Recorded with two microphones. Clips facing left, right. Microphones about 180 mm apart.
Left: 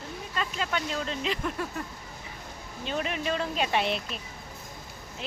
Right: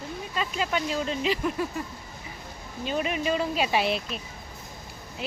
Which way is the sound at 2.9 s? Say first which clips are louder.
Right 3 dB; 5° right (ahead or behind).